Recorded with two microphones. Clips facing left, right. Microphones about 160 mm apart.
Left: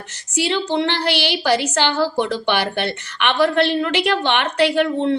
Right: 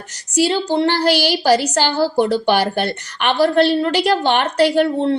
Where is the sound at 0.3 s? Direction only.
35° right (ahead or behind).